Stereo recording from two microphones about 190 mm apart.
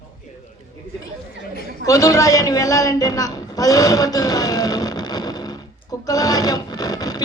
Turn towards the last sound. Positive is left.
turn(degrees=20)  # may be behind; listen again after turning